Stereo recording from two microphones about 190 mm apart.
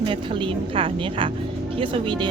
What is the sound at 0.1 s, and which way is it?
Speech, 25° right (ahead or behind).